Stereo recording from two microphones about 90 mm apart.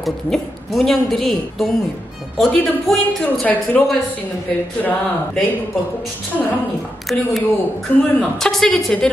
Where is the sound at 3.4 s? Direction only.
15° left (ahead or behind).